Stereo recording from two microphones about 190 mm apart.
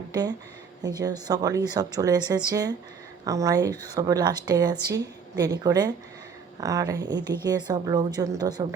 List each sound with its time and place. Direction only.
0.1 s a woman's voice: 20° right (ahead or behind)